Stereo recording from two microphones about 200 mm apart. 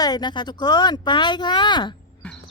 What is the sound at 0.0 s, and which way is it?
Speech, 20° left (ahead or behind).